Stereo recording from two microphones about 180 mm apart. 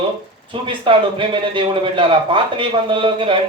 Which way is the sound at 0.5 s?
30° right (ahead or behind).